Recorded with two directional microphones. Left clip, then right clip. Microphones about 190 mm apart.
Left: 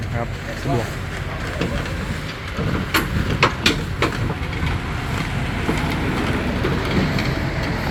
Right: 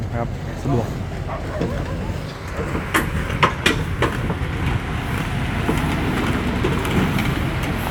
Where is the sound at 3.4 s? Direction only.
20° left (ahead or behind).